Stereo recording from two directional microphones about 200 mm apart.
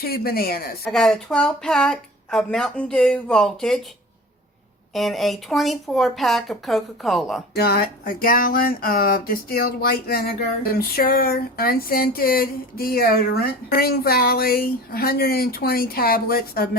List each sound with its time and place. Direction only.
0.0 s speech: 50° left (ahead or behind)
0.9 s speech: 5° left (ahead or behind)
4.9 s speech: centre (ahead or behind)
7.5 s speech: 50° left (ahead or behind)